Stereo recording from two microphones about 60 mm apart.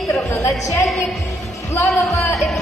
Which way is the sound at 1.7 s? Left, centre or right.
Left.